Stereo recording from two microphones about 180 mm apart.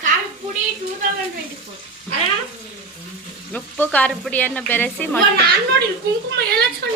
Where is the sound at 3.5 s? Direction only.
10° left (ahead or behind).